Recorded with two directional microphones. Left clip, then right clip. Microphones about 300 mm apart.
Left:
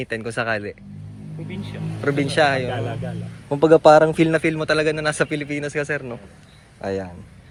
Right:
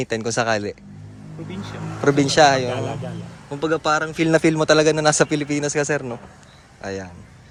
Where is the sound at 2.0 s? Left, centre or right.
Centre.